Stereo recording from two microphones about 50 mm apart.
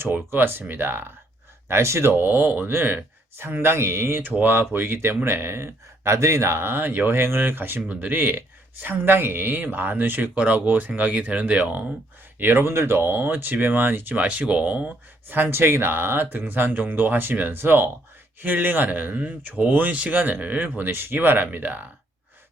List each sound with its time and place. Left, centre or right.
0.0 s speech: right
1.6 s speech: right
2.0 s speech: right
4.2 s speech: right
4.7 s speech: right
10.3 s speech: right
12.4 s speech: right
14.2 s speech: right
15.3 s speech: right